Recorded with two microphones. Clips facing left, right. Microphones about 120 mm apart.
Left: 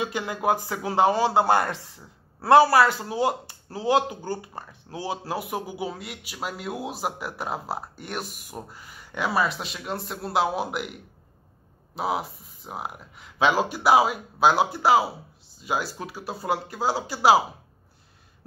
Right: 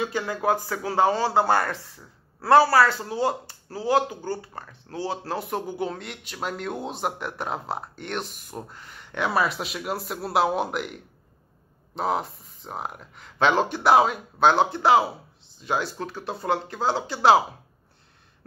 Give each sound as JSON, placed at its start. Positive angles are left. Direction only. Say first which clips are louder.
{"t": 0.0, "sound": "speech", "louder": "right 1 dB", "side_deg": 15}